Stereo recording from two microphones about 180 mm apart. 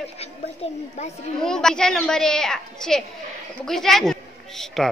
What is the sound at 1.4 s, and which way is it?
A woman's voice, 5° left (ahead or behind).